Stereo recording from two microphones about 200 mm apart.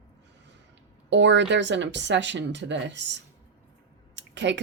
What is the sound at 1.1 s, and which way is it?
Speech, 65° right (ahead or behind).